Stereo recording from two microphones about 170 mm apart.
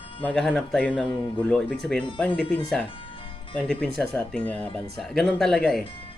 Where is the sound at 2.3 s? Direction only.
30° left (ahead or behind).